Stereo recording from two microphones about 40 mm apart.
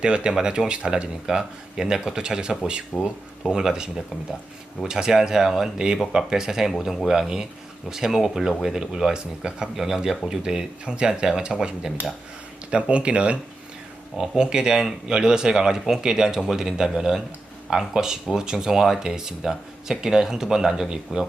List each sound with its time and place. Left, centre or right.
0.0 s speech: right; by 7.0 s centre
7.1 s speech: centre